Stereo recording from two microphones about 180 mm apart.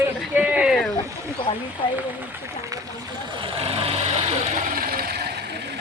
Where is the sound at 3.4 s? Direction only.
30° right (ahead or behind).